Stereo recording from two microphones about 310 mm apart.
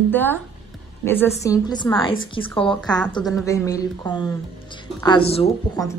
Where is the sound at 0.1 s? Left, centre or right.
Centre.